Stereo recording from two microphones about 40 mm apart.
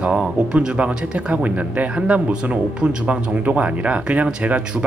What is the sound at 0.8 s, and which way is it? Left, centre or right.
Speech, right.